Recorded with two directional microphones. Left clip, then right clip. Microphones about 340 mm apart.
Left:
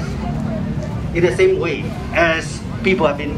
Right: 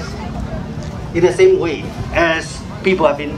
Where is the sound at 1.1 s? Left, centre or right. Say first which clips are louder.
Right 3 dB; right.